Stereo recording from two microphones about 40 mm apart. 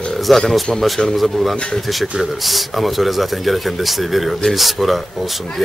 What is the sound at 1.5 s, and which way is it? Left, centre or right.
Speech, left.